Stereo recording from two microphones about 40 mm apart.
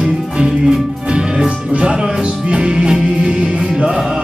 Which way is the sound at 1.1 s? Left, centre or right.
Right.